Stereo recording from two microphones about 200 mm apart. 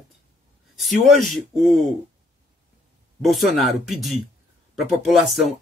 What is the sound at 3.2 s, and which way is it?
Speech, centre (ahead or behind).